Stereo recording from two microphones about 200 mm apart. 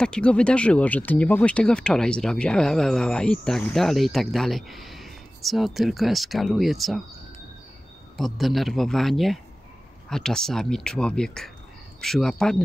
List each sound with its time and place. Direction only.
0.0 s speech: 5° left (ahead or behind)
8.2 s speech: centre (ahead or behind)